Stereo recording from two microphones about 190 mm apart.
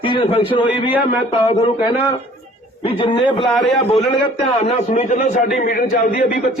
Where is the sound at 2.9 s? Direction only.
30° left (ahead or behind).